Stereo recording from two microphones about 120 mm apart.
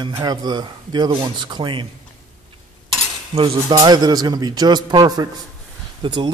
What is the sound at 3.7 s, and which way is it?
A man's voice, 35° right (ahead or behind).